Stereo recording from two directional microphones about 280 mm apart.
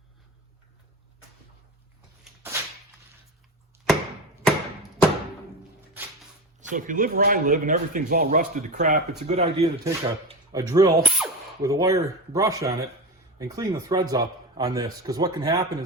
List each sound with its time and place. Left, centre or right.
2.2 s whip: centre
6.6 s speech: right